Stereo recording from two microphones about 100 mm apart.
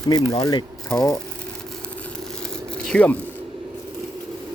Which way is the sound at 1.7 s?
10° left (ahead or behind).